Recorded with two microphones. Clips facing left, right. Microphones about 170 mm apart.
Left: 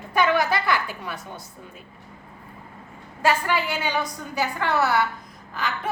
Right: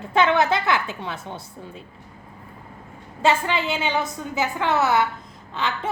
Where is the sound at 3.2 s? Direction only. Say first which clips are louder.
Right 1 dB; 25° right (ahead or behind).